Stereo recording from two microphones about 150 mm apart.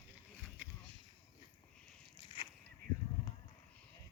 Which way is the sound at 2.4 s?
35° left (ahead or behind).